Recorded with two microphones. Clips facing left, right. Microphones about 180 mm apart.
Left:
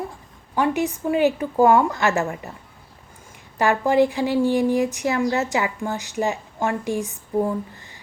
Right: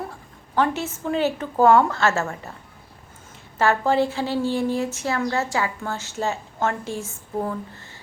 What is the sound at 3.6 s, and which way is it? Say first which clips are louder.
Speech: left 2 dB; 15° left (ahead or behind).